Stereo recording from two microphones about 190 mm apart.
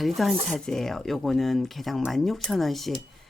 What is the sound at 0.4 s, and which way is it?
Speech, centre (ahead or behind).